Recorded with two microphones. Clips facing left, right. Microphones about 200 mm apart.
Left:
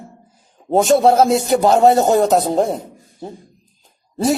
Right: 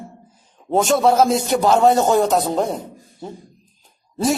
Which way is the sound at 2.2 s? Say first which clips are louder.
Left 3 dB; 40° left (ahead or behind).